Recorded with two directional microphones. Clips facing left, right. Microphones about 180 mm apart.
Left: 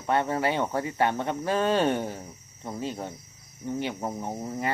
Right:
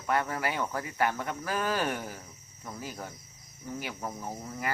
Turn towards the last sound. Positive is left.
turn(degrees=30)  # may be behind; listen again after turning